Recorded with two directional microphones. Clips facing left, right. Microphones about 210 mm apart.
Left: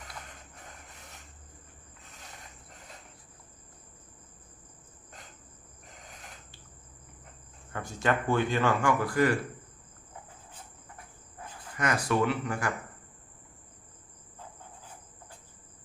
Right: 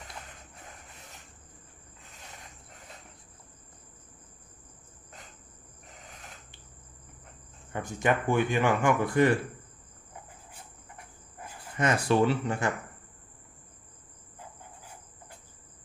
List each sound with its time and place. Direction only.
7.7 s speech: 15° right (ahead or behind)
11.8 s speech: 25° right (ahead or behind)